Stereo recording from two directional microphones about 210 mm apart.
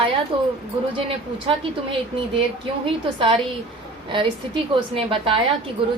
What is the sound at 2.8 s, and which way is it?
A woman's voice, 25° right (ahead or behind).